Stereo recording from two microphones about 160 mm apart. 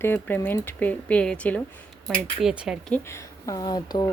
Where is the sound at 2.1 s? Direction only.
5° right (ahead or behind).